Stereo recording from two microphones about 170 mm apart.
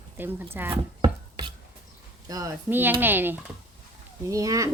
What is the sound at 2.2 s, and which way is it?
A child's voice, 20° right (ahead or behind).